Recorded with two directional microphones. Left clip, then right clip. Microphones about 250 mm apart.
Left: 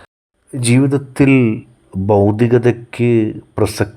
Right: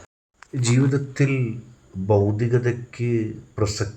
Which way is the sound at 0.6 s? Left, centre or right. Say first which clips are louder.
Left 8 dB; left.